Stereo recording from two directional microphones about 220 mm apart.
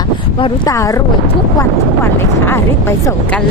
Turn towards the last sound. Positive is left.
turn(degrees=10)  # may be behind; listen again after turning